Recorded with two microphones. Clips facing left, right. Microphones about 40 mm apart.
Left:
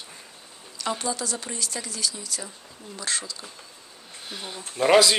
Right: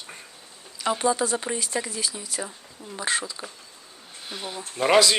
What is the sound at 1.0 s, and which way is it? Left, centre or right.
Speech, right.